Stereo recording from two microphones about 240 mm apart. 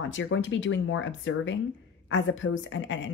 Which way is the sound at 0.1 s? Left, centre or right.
Left.